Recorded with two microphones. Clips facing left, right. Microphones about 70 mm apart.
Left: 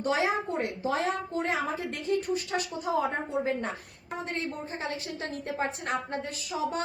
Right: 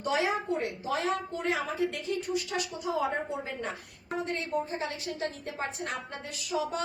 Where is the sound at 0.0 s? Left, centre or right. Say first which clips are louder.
Left 2 dB; left.